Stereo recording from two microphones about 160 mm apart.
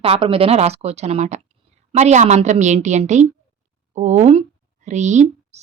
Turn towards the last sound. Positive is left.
turn(degrees=-45)  # may be behind; listen again after turning